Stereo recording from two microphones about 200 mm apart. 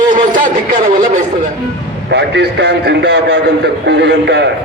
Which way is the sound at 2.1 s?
60° right (ahead or behind).